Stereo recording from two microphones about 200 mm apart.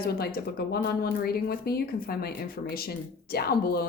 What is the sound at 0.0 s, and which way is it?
Speech, 50° left (ahead or behind).